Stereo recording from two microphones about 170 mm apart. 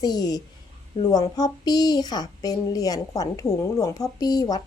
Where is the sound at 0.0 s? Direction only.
25° left (ahead or behind).